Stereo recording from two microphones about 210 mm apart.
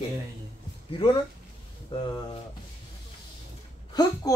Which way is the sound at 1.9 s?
20° left (ahead or behind).